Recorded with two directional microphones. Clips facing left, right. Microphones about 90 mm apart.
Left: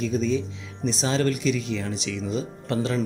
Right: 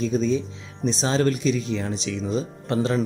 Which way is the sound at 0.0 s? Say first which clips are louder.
Right 2 dB; 25° right (ahead or behind).